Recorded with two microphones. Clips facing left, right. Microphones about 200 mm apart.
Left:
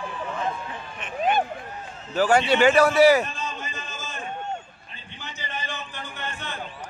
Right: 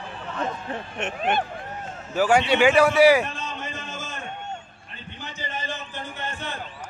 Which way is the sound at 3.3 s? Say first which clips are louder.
Even; 65° right (ahead or behind).